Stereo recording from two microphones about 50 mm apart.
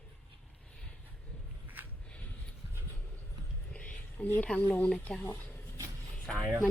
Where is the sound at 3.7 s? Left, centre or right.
Left.